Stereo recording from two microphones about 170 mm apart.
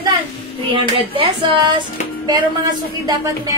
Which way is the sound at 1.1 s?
30° right (ahead or behind).